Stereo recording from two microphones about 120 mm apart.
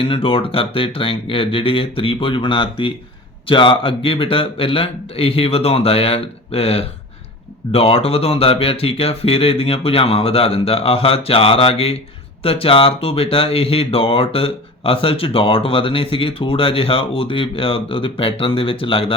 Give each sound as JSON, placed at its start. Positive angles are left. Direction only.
{"t": 0.0, "sound": "speech", "side_deg": 50}